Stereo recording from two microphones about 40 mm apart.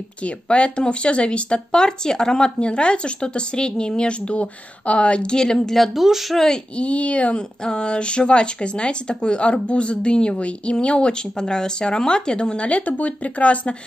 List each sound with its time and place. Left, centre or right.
0.2 s speech: left; by 5.9 s centre
5.9 s speech: centre
6.3 s speech: centre
6.8 s speech: left
7.3 s speech: left
12.6 s speech: left